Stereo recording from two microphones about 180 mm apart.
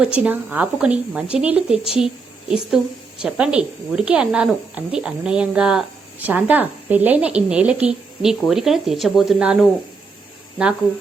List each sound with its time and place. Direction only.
0.0 s speech: 5° right (ahead or behind)